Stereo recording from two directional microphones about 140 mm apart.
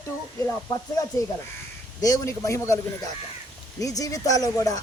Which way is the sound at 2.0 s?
20° left (ahead or behind).